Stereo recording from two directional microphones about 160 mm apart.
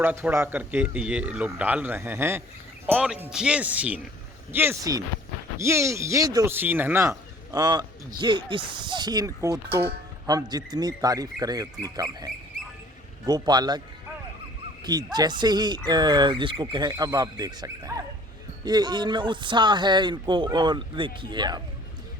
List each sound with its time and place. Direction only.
0.0 s a man's voice: 15° right (ahead or behind)
2.9 s a man's voice: 5° right (ahead or behind); by 13.8 s 25° right (ahead or behind)
14.8 s speech: 25° right (ahead or behind)